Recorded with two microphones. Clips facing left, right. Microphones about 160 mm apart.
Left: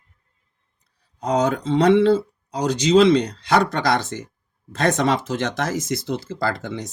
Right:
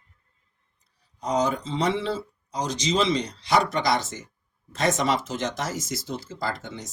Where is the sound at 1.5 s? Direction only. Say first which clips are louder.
Left 10 dB; 60° left (ahead or behind).